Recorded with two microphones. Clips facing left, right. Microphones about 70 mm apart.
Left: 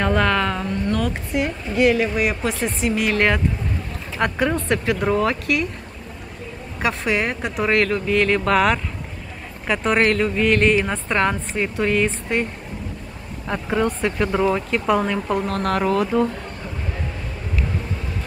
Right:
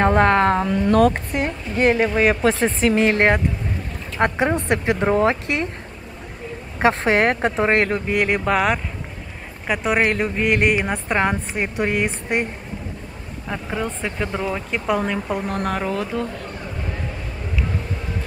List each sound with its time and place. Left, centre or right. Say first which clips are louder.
0.0 s speech: right 4 dB; right
0.9 s speech: right 9 dB; right
6.8 s speech: right 5 dB; right
7.2 s speech: right 6 dB; right
7.5 s speech: right 1 dB; right
8.5 s speech: left 2 dB; centre
10.1 s speech: left 2 dB; right
13.5 s speech: left 5 dB; centre
16.0 s speech: left 6 dB; centre